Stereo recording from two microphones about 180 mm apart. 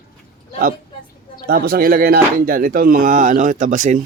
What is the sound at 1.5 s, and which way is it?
Speech, 55° right (ahead or behind).